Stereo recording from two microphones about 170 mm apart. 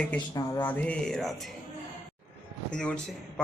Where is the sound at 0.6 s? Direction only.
10° left (ahead or behind).